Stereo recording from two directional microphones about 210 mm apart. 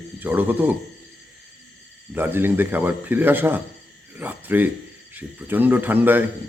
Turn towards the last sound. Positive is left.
turn(degrees=-10)  # may be behind; listen again after turning